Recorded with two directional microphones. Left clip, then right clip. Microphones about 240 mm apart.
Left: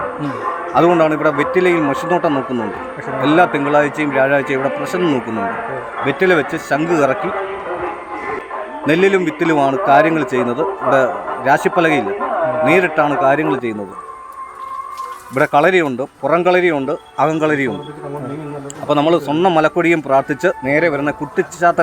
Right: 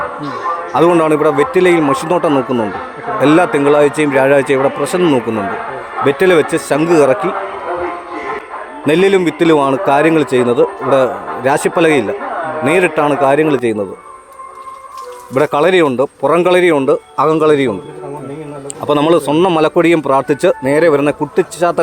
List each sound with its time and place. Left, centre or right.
0.7 s speech: right
8.9 s speech: right
15.4 s speech: right
18.9 s speech: right